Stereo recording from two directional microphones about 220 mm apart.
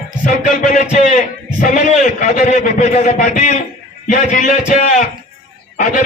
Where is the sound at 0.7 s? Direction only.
35° left (ahead or behind).